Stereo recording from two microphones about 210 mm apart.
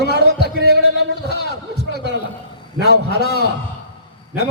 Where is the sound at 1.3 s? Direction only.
50° left (ahead or behind).